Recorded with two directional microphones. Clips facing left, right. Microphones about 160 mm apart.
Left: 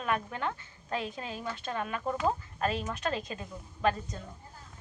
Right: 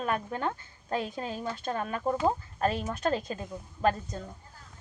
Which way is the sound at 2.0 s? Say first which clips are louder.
Right 4 dB; 30° right (ahead or behind).